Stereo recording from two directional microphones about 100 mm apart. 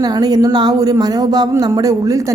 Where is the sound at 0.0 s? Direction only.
40° right (ahead or behind).